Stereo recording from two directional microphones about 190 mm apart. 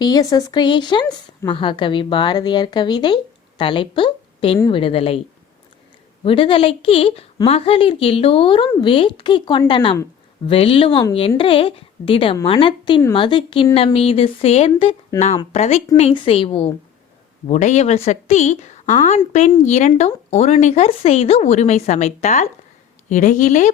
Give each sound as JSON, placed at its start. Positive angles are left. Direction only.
{"t": 0.0, "sound": "a woman's voice", "side_deg": 20}
{"t": 6.2, "sound": "a woman's voice", "side_deg": 30}
{"t": 17.5, "sound": "a woman's voice", "side_deg": 40}